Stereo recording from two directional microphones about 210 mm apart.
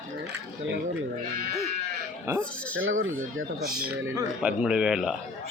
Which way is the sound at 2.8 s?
70° right (ahead or behind).